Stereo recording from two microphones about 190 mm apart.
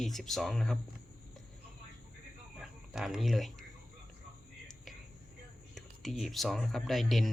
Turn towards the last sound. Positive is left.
turn(degrees=0)  # may be behind; listen again after turning